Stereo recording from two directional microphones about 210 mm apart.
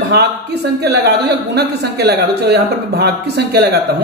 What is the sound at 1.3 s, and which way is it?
Speech, 50° right (ahead or behind).